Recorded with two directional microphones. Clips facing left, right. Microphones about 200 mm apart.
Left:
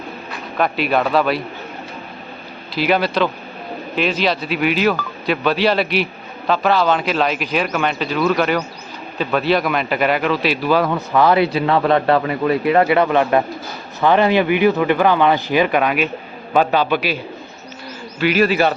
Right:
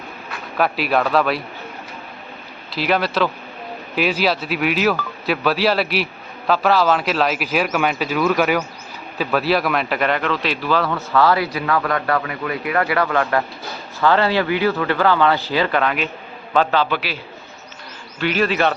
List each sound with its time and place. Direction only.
0.5 s speech: centre (ahead or behind)
2.7 s speech: centre (ahead or behind)
18.2 s speech: 5° left (ahead or behind)